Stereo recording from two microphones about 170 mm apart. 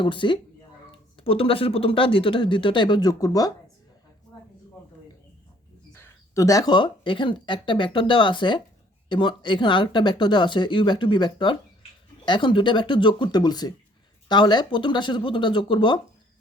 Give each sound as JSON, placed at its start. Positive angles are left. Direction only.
{"t": 0.0, "sound": "speech", "side_deg": 30}
{"t": 6.0, "sound": "speech", "side_deg": 20}